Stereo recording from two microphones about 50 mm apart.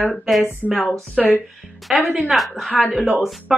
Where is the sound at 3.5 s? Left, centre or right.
Centre.